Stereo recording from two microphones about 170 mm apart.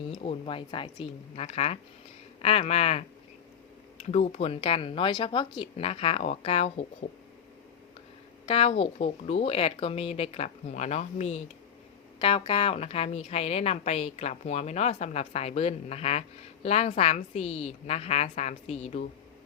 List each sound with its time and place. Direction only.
0.2 s a woman's voice: 35° left (ahead or behind)
4.1 s a woman's voice: 40° left (ahead or behind)
8.4 s a woman's voice: 35° left (ahead or behind)